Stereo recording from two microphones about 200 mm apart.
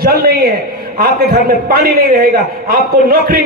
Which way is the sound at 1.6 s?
50° right (ahead or behind).